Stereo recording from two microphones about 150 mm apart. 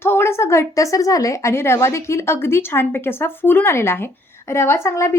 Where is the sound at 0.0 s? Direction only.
15° left (ahead or behind).